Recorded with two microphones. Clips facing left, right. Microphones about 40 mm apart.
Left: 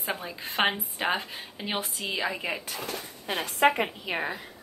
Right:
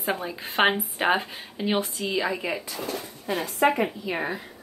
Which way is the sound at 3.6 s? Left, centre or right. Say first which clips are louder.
Right 1 dB; left.